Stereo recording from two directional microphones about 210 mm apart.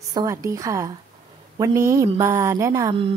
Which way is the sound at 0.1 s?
15° right (ahead or behind).